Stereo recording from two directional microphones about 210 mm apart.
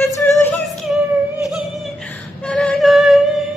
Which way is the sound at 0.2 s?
5° left (ahead or behind).